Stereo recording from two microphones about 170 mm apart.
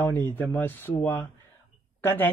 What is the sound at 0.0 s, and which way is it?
A man's voice, 10° left (ahead or behind).